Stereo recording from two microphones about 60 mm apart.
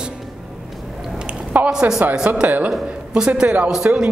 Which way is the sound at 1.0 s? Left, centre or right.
Centre.